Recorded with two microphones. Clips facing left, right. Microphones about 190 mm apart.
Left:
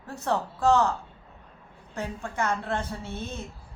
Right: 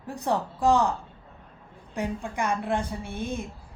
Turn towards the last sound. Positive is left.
turn(degrees=-15)  # may be behind; listen again after turning